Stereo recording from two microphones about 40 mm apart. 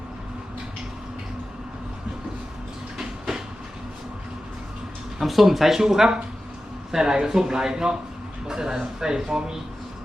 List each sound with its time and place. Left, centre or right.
3.0 s train: centre
5.2 s a man's voice: centre